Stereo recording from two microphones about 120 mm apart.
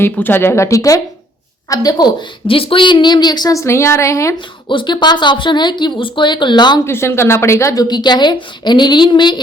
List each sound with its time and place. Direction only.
0.0 s a woman's voice: 20° left (ahead or behind)
2.5 s a woman's voice: 50° left (ahead or behind); by 4.4 s 25° left (ahead or behind)
4.7 s a woman's voice: 40° left (ahead or behind)
6.8 s a woman's voice: 20° left (ahead or behind); by 9.4 s 40° left (ahead or behind)